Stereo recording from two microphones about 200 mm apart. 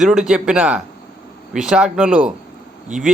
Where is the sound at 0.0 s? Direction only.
5° right (ahead or behind).